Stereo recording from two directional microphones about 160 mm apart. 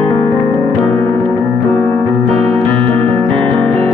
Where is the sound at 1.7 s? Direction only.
35° right (ahead or behind).